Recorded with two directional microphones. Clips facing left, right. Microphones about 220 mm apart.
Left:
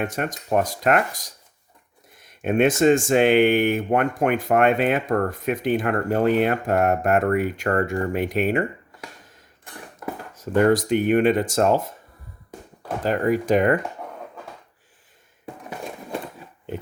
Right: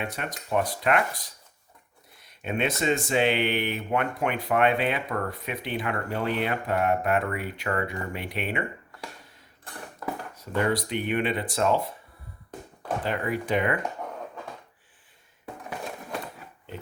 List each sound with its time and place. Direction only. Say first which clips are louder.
0.0 s speech: left 7 dB; 45° left (ahead or behind)
10.4 s speech: left 8 dB; 45° left (ahead or behind)
13.1 s speech: left 9 dB; 40° left (ahead or behind)